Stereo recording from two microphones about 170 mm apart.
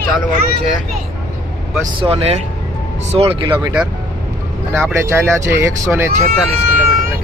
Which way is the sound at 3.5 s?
20° right (ahead or behind).